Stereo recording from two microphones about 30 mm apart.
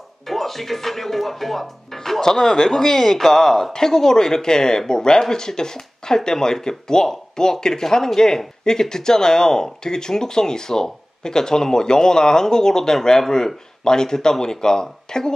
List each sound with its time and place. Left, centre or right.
0.3 s speech: centre; by 15.3 s left